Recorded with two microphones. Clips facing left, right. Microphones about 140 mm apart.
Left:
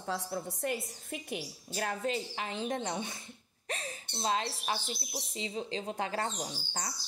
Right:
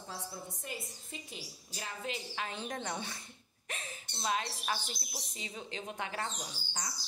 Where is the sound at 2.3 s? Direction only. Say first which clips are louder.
Left 4 dB; 25° left (ahead or behind).